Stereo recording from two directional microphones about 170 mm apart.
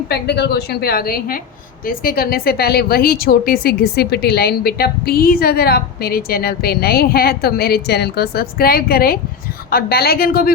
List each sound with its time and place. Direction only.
0.1 s a woman's voice: 75° left (ahead or behind)